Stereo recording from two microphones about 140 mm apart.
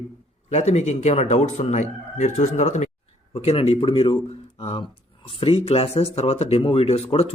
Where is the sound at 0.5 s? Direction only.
50° left (ahead or behind).